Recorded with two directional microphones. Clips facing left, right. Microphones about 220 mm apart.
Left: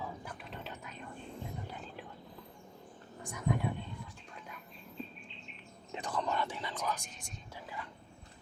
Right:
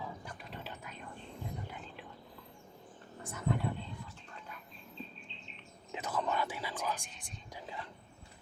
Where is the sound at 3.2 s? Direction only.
15° left (ahead or behind).